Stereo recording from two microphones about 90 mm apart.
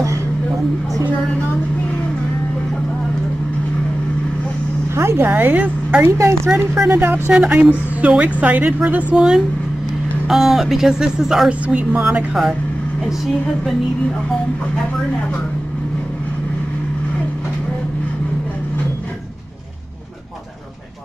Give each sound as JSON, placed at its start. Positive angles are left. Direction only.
{"t": 4.9, "sound": "speech", "side_deg": -30}
{"t": 6.1, "sound": "a woman's voice", "side_deg": -35}